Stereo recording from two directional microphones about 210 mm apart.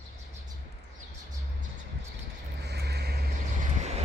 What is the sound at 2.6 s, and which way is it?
Vehicle, 50° right (ahead or behind).